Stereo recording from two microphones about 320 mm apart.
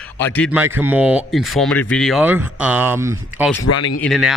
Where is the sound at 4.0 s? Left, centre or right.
Centre.